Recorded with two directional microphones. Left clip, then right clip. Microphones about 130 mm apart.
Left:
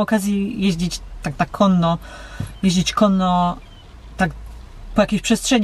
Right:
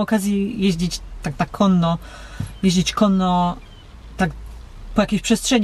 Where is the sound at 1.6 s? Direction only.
15° left (ahead or behind).